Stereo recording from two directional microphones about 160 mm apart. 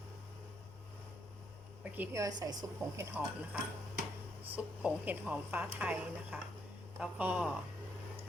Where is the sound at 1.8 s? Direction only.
15° right (ahead or behind).